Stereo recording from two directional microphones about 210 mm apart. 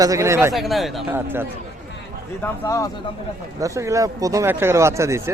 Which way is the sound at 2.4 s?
15° left (ahead or behind).